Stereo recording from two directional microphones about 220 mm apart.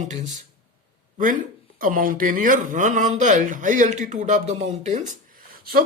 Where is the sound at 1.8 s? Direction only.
40° right (ahead or behind).